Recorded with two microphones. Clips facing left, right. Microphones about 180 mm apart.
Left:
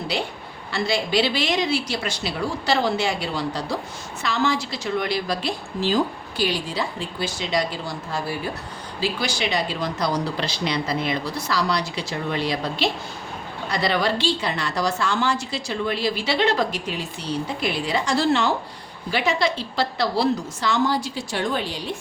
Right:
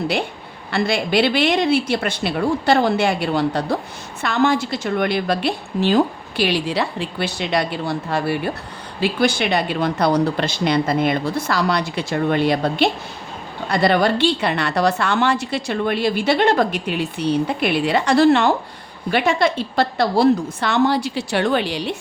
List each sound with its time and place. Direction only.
0.7 s a woman's voice: 55° right (ahead or behind)